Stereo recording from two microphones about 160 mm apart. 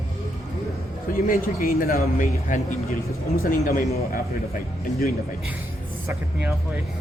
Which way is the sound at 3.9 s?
70° left (ahead or behind).